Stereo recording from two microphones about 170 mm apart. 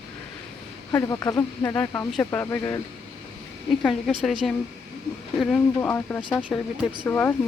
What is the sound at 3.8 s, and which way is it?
Speech, 5° right (ahead or behind).